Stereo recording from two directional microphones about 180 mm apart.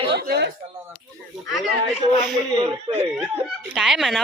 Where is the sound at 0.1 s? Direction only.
65° right (ahead or behind).